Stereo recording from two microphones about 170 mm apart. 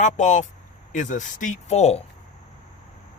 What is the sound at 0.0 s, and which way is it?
A man's voice, 45° left (ahead or behind).